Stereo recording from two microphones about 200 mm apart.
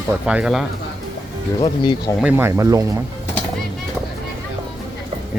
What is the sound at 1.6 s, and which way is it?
Speech, 25° left (ahead or behind).